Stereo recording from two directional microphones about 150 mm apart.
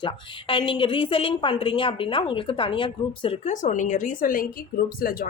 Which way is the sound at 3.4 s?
55° left (ahead or behind).